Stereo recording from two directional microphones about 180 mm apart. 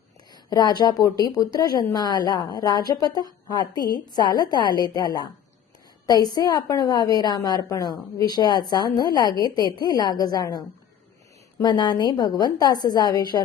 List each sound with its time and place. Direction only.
0.5 s a woman's voice: 20° left (ahead or behind)
11.6 s a woman's voice: 25° left (ahead or behind)